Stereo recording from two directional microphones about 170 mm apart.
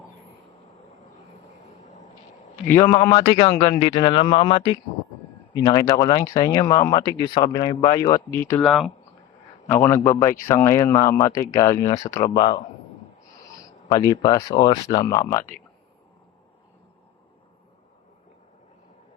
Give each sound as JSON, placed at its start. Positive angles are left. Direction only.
{"t": 2.6, "sound": "a man's voice", "side_deg": 15}
{"t": 3.7, "sound": "speech", "side_deg": 30}
{"t": 8.6, "sound": "speech", "side_deg": 0}
{"t": 9.6, "sound": "speech", "side_deg": 15}